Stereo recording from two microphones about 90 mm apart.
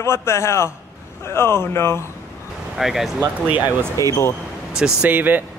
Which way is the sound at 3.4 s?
15° right (ahead or behind).